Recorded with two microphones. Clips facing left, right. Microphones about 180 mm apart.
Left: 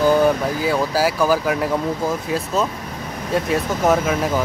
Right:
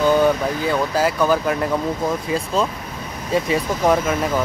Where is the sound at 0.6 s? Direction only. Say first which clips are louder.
Left 1 dB; 5° left (ahead or behind).